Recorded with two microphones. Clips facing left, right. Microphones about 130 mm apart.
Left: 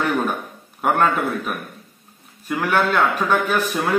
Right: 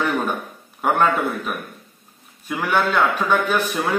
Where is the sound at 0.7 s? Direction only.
5° left (ahead or behind).